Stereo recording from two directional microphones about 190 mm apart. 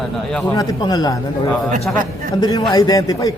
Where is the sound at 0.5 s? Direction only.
20° left (ahead or behind).